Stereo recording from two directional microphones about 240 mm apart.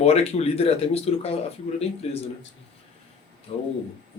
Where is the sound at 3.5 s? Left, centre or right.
Left.